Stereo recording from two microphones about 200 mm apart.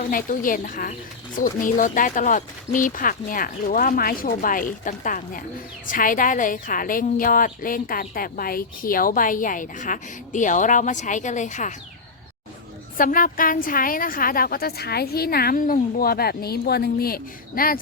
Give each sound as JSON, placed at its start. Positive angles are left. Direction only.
{"t": 0.1, "sound": "speech", "side_deg": 45}
{"t": 13.0, "sound": "speech", "side_deg": 45}